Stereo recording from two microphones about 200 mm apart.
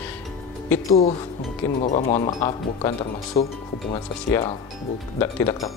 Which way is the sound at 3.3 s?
40° left (ahead or behind).